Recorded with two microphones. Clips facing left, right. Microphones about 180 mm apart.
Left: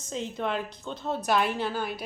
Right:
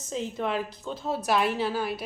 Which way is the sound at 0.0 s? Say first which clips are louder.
Right 1 dB; centre (ahead or behind).